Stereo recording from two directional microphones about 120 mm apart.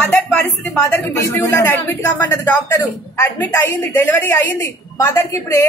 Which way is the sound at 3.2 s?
20° left (ahead or behind).